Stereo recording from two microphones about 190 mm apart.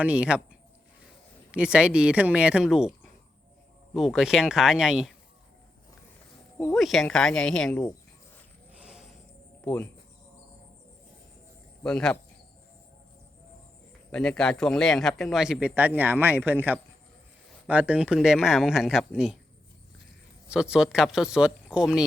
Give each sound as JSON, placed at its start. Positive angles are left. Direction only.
{"t": 0.0, "sound": "a man's voice", "side_deg": -5}
{"t": 1.5, "sound": "a man's voice", "side_deg": -5}
{"t": 6.7, "sound": "a man's voice", "side_deg": 0}
{"t": 8.7, "sound": "a sound", "side_deg": -5}
{"t": 9.6, "sound": "speech", "side_deg": 10}
{"t": 11.8, "sound": "a man's voice", "side_deg": 5}
{"t": 14.1, "sound": "a man's voice", "side_deg": 5}
{"t": 20.5, "sound": "a man's voice", "side_deg": -5}